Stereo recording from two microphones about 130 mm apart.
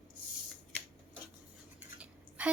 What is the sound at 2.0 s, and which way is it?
Dishes, 10° right (ahead or behind).